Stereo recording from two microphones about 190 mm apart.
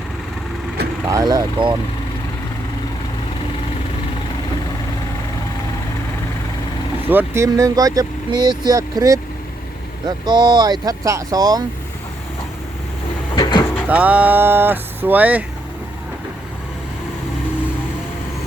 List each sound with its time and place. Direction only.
1.0 s speech: 20° right (ahead or behind)
7.1 s speech: 10° right (ahead or behind)
13.3 s vehicle: 25° left (ahead or behind)
13.8 s speech: 5° right (ahead or behind)